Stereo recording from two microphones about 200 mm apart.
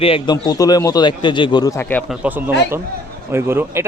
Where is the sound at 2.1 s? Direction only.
10° right (ahead or behind).